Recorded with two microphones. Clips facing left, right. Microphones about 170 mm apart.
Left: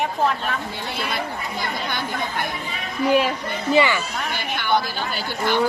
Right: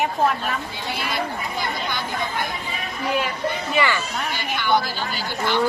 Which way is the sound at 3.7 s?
25° left (ahead or behind).